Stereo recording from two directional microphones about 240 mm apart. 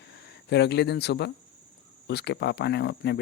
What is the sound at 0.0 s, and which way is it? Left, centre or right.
Speech, left.